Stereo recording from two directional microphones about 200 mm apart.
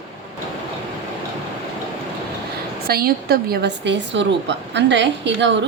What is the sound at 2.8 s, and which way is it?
A woman's voice, 50° right (ahead or behind).